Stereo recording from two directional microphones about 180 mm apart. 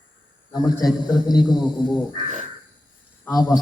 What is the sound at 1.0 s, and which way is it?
Speech, 20° left (ahead or behind).